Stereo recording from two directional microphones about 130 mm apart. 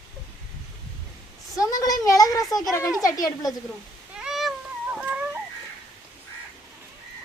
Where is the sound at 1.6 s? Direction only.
30° left (ahead or behind).